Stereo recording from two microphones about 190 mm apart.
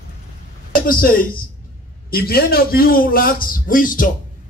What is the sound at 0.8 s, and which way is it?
A man's voice, 50° left (ahead or behind).